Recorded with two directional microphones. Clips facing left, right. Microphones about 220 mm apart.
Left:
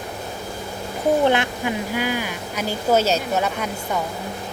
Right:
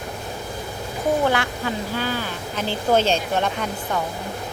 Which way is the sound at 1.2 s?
20° left (ahead or behind).